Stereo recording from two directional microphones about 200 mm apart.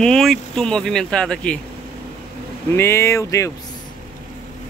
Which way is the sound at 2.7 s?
15° left (ahead or behind).